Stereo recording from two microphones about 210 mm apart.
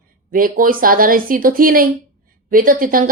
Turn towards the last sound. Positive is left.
turn(degrees=-40)  # may be behind; listen again after turning